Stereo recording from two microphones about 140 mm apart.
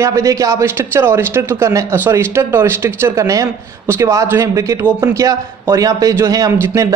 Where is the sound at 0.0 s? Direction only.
20° right (ahead or behind).